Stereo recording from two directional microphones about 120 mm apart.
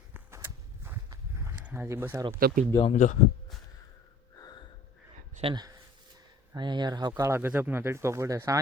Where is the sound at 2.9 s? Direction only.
90° left.